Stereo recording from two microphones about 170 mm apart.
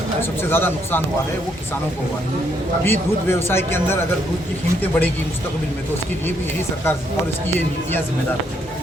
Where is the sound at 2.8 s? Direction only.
15° left (ahead or behind).